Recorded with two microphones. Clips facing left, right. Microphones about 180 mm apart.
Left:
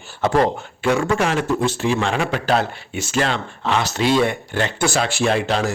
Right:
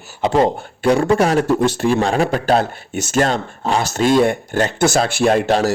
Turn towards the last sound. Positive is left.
turn(degrees=-45)  # may be behind; listen again after turning